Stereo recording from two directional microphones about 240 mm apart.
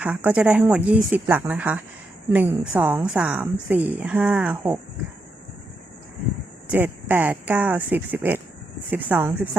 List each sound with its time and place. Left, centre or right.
0.0 s a woman's voice: centre
6.7 s a woman's voice: centre